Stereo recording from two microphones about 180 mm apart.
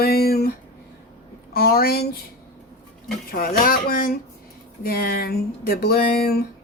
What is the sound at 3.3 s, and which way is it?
Speech, 55° left (ahead or behind).